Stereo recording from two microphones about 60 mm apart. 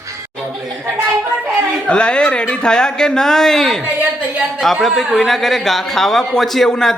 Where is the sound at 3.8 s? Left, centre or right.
Right.